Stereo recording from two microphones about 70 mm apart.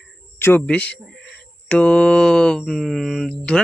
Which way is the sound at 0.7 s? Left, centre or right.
Centre.